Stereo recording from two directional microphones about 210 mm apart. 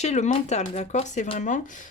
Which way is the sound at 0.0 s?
35° left (ahead or behind).